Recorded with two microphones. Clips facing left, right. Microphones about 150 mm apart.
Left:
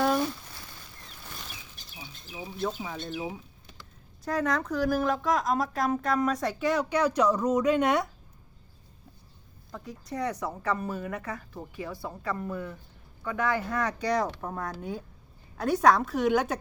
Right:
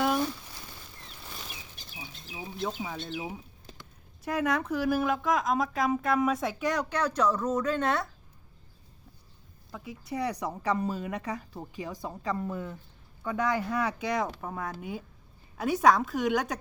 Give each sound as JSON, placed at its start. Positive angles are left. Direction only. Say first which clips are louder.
{"t": 0.0, "sound": "a sound", "louder": "left 2 dB", "side_deg": -5}
{"t": 2.6, "sound": "speech", "louder": "left 1 dB", "side_deg": -5}
{"t": 9.7, "sound": "a woman's voice", "louder": "even", "side_deg": -5}